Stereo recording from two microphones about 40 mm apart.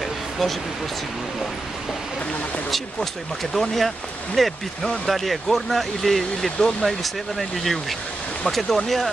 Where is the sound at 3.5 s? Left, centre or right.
Centre.